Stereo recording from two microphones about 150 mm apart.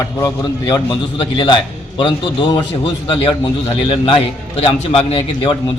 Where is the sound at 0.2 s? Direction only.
25° left (ahead or behind).